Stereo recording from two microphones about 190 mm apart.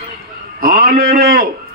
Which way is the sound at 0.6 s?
55° right (ahead or behind).